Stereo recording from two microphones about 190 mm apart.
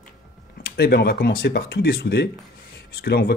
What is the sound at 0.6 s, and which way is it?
Speech, 55° left (ahead or behind).